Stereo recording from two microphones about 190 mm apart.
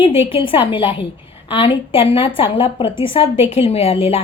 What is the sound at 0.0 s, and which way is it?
A woman's voice, 30° left (ahead or behind).